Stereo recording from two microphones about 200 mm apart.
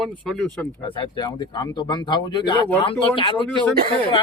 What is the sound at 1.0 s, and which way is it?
Speech, 25° left (ahead or behind).